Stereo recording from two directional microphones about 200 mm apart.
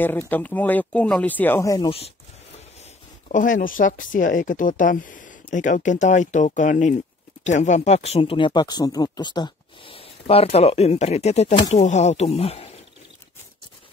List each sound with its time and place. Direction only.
0.0 s speech: 10° left (ahead or behind)
1.9 s speech: 30° left (ahead or behind)
3.3 s speech: 40° left (ahead or behind)